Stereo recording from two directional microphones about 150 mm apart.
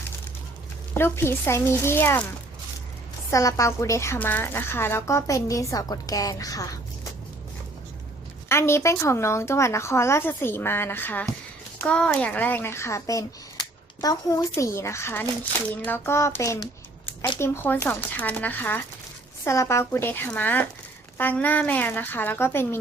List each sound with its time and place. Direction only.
0.9 s a child's voice: 15° left (ahead or behind)
3.2 s a woman's voice: 20° left (ahead or behind)
8.4 s a child's voice: 15° left (ahead or behind)